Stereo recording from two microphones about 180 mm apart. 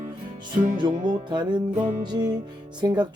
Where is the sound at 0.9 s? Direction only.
45° right (ahead or behind).